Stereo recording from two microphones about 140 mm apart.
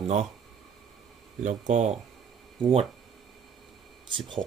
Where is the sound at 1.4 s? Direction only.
60° right (ahead or behind).